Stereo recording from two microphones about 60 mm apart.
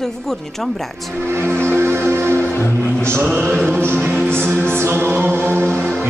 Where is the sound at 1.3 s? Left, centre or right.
Right.